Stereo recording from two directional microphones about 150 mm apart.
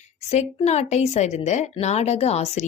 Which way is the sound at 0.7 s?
45° left (ahead or behind).